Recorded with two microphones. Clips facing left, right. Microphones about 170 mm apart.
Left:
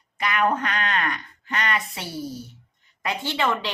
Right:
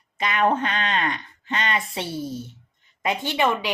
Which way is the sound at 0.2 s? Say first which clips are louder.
Right 1 dB; 25° right (ahead or behind).